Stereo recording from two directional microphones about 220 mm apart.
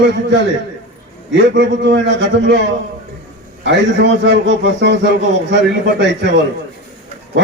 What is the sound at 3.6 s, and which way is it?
A man's voice, 50° right (ahead or behind).